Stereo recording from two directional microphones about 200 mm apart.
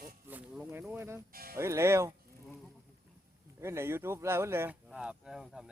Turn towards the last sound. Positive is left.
turn(degrees=0)  # may be behind; listen again after turning